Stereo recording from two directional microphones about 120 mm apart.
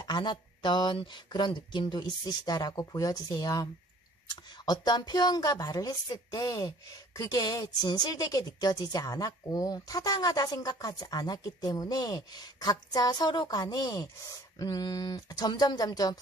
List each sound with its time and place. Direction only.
0.0 s speech: 40° left (ahead or behind)